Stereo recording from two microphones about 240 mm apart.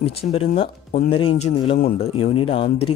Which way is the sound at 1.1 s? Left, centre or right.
Left.